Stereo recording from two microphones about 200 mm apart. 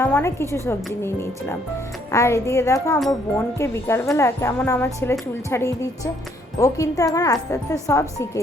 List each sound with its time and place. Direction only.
0.0 s speech: 10° left (ahead or behind)